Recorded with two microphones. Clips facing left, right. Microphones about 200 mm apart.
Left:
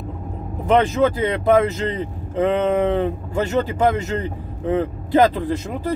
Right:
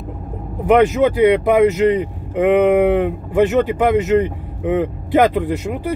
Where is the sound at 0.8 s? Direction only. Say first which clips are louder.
Right 6 dB; 15° right (ahead or behind).